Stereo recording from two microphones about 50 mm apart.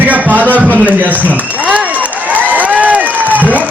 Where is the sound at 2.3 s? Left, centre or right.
Right.